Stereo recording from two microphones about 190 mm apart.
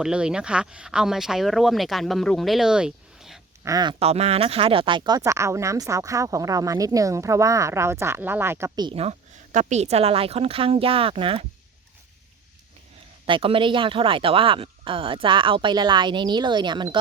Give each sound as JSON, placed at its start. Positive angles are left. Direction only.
{"t": 0.0, "sound": "speech", "side_deg": -5}
{"t": 3.6, "sound": "speech", "side_deg": -20}
{"t": 4.0, "sound": "speech", "side_deg": -35}
{"t": 13.2, "sound": "speech", "side_deg": -25}